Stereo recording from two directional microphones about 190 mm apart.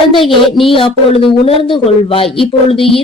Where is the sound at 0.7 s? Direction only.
25° left (ahead or behind).